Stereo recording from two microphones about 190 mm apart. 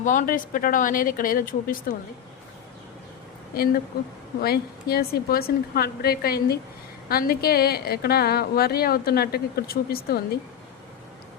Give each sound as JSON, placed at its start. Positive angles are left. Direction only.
{"t": 0.0, "sound": "a woman's voice", "side_deg": 45}
{"t": 3.5, "sound": "a woman's voice", "side_deg": 50}